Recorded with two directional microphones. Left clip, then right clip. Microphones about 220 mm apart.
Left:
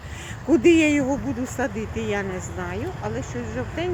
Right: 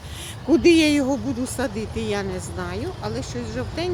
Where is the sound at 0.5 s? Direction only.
15° right (ahead or behind).